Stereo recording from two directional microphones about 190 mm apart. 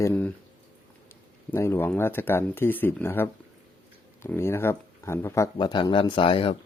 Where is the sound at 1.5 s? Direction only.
10° left (ahead or behind); by 6.6 s 30° left (ahead or behind).